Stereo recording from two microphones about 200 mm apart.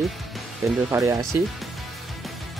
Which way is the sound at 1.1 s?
15° right (ahead or behind).